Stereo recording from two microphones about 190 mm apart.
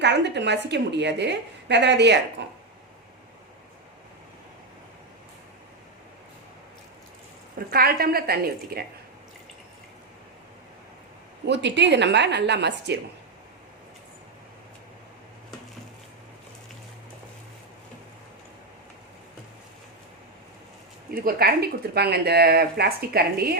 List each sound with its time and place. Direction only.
0.0 s speech: 65° right (ahead or behind)
7.7 s a woman's voice: 55° right (ahead or behind)
11.4 s speech: 65° right (ahead or behind)
21.2 s speech: 50° right (ahead or behind)